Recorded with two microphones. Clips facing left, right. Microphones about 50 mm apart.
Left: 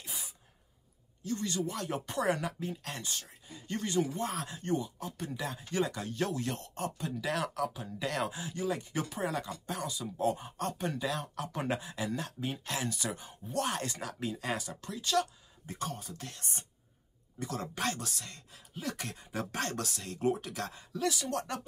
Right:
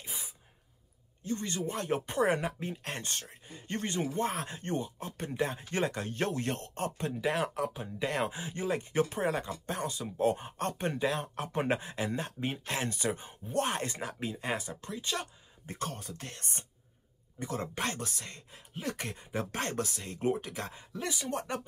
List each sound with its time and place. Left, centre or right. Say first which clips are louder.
0.0 s a sound: right 1 dB; right
1.2 s speech: even; right
15.6 s speech: right 1 dB; right
17.4 s speech: right 1 dB; right